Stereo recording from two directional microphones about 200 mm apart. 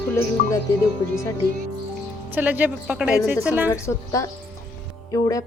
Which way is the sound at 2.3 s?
10° right (ahead or behind).